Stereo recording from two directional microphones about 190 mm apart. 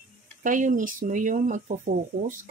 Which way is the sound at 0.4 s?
45° right (ahead or behind).